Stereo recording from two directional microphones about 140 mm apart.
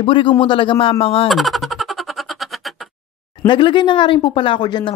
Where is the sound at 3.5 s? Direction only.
35° left (ahead or behind).